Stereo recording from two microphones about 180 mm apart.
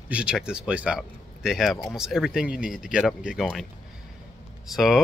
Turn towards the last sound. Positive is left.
turn(degrees=0)  # may be behind; listen again after turning